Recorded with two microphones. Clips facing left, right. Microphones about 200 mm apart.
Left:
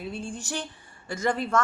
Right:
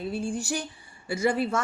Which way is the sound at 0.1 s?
10° right (ahead or behind).